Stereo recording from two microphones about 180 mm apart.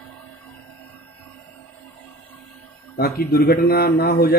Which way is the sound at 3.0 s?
60° left (ahead or behind).